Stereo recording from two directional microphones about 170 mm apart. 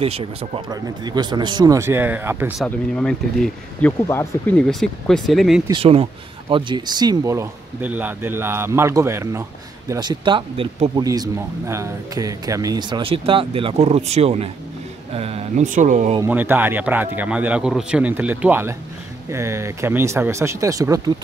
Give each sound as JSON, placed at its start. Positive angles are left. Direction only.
{"t": 0.0, "sound": "speech", "side_deg": -35}
{"t": 2.6, "sound": "speech", "side_deg": 5}
{"t": 5.7, "sound": "speech", "side_deg": -35}
{"t": 11.1, "sound": "speech", "side_deg": -20}
{"t": 16.3, "sound": "speech", "side_deg": -10}